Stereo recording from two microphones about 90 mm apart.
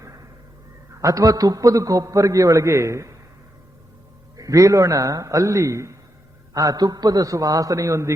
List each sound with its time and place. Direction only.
0.0 s a sound: 35° right (ahead or behind)
1.0 s a man's voice: 40° right (ahead or behind)
4.4 s a man's voice: 40° right (ahead or behind)